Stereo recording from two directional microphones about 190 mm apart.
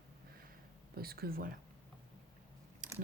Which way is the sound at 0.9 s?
55° right (ahead or behind).